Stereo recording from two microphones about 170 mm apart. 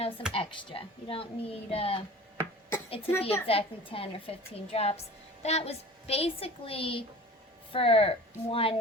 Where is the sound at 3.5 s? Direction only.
35° left (ahead or behind).